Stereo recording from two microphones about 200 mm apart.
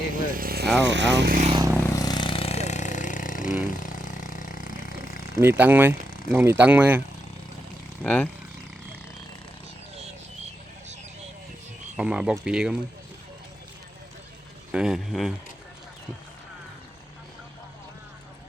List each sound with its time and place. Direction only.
0.1 s vehicle: 45° right (ahead or behind)
0.8 s speech: 65° right (ahead or behind)
1.9 s a sound: 20° left (ahead or behind); by 5.3 s 45° left (ahead or behind)
5.4 s speech: 10° right (ahead or behind)
6.1 s a sound: 45° left (ahead or behind)
6.3 s speech: 10° right (ahead or behind)
8.0 s speech: 5° left (ahead or behind)
11.9 s speech: 5° right (ahead or behind)
14.7 s speech: 5° right (ahead or behind)